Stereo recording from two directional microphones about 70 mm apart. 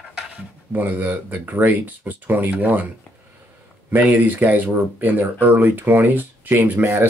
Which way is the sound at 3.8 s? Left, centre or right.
Right.